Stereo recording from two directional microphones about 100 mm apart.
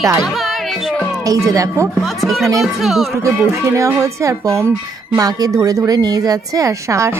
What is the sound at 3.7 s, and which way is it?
A woman's voice, 30° right (ahead or behind).